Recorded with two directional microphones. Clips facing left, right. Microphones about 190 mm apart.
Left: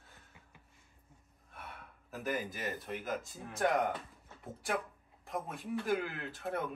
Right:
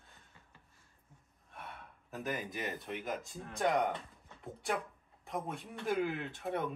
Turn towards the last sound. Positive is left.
turn(degrees=0)  # may be behind; listen again after turning